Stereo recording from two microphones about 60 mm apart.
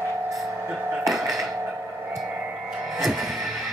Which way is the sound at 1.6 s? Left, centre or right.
Right.